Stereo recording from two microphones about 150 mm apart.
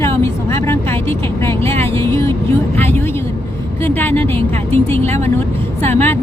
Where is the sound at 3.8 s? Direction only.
15° left (ahead or behind).